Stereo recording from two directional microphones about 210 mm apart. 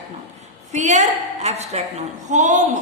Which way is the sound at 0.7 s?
35° right (ahead or behind).